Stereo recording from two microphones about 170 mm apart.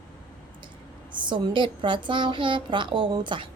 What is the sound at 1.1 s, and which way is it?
A woman's voice, 25° right (ahead or behind).